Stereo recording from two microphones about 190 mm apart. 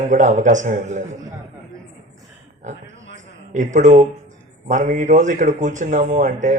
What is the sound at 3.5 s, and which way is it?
A man's voice, 40° right (ahead or behind).